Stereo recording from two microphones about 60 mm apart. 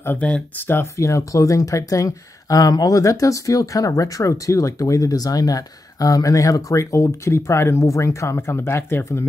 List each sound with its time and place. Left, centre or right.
0.2 s speech: left
0.9 s speech: left